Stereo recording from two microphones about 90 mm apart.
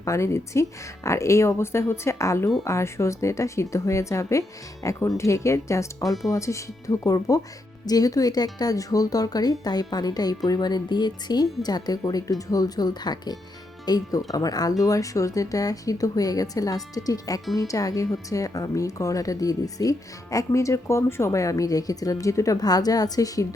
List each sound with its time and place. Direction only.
0.0 s a woman's voice: 35° left (ahead or behind)